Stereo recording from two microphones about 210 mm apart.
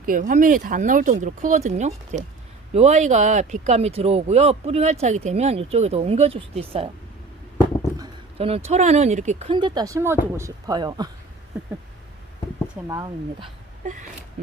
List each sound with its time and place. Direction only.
0.0 s speech: 40° right (ahead or behind)
7.9 s speech: 25° right (ahead or behind)
12.9 s speech: 20° right (ahead or behind)